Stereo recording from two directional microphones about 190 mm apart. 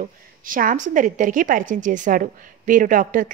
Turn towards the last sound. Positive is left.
turn(degrees=-45)  # may be behind; listen again after turning